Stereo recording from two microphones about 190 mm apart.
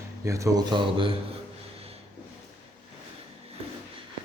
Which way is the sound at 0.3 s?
15° right (ahead or behind).